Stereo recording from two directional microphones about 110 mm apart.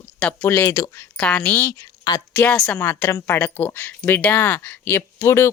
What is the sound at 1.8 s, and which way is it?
Speech, 30° left (ahead or behind).